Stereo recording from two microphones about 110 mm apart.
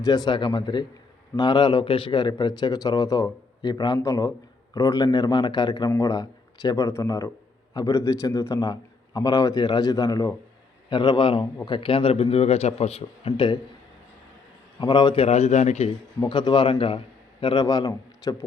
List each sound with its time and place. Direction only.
0.0 s a man's voice: 35° left (ahead or behind)
10.8 s a man's voice: 45° left (ahead or behind)
14.8 s a man's voice: 40° left (ahead or behind)
15.1 s a man's voice: 70° left (ahead or behind); by 15.9 s 90° left
16.2 s a man's voice: 40° left (ahead or behind)
16.7 s a man's voice: 55° left (ahead or behind)
17.4 s a man's voice: 40° left (ahead or behind)